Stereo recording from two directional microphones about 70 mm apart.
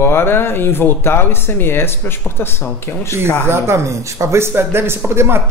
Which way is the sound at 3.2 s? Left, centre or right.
Right.